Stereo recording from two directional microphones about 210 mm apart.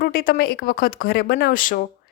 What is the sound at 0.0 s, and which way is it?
A woman's voice, 45° left (ahead or behind).